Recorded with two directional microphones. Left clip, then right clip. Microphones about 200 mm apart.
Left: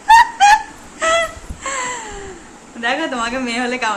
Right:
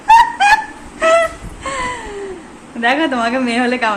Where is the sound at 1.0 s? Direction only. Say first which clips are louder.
Right 4 dB; 15° right (ahead or behind).